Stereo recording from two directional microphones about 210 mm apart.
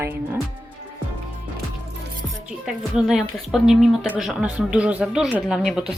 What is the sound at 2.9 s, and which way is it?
Speech, centre (ahead or behind).